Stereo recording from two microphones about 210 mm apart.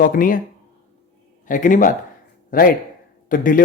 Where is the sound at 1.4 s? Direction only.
40° left (ahead or behind).